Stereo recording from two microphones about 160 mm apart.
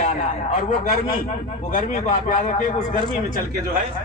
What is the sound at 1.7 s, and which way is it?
A man's voice, 60° left (ahead or behind).